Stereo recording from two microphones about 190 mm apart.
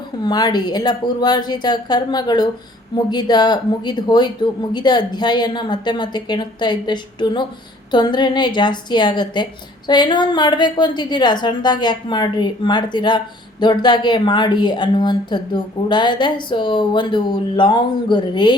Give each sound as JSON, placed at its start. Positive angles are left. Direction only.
{"t": 0.2, "sound": "a woman's voice", "side_deg": 20}